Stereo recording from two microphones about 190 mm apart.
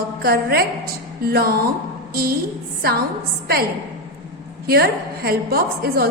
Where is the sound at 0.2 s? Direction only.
55° right (ahead or behind).